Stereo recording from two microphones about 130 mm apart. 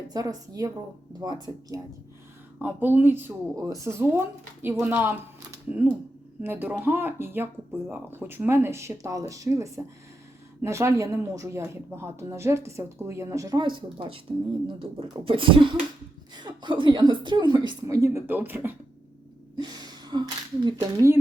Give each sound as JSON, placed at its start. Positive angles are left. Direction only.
{"t": 0.1, "sound": "a woman's voice", "side_deg": -30}
{"t": 2.6, "sound": "speech", "side_deg": -15}
{"t": 13.6, "sound": "a woman's voice", "side_deg": -40}
{"t": 19.5, "sound": "gasp", "side_deg": -30}
{"t": 20.7, "sound": "speech", "side_deg": -20}